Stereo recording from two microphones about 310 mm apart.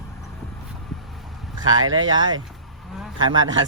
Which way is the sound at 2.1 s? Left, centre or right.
Centre.